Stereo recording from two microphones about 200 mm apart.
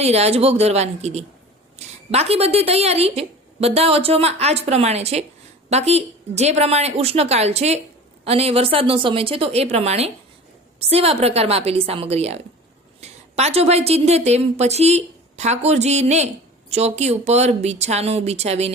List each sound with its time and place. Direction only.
0.0 s a woman's voice: 30° right (ahead or behind)